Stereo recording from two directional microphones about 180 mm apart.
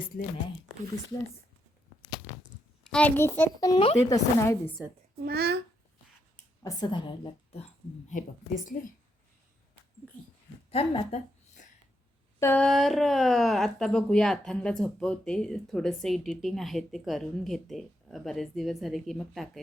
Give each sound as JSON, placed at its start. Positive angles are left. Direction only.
{"t": 2.8, "sound": "a child's voice", "side_deg": 5}
{"t": 3.7, "sound": "speech", "side_deg": 25}
{"t": 4.4, "sound": "a child's voice", "side_deg": 15}
{"t": 5.2, "sound": "a child's voice", "side_deg": -60}
{"t": 6.6, "sound": "a woman's voice", "side_deg": 20}
{"t": 8.1, "sound": "a woman's voice", "side_deg": 45}
{"t": 10.7, "sound": "a sound", "side_deg": 35}
{"t": 12.4, "sound": "a sound", "side_deg": 10}
{"t": 12.6, "sound": "speech", "side_deg": 0}